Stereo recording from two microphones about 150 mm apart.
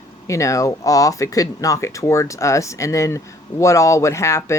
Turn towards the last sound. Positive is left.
turn(degrees=20)  # may be behind; listen again after turning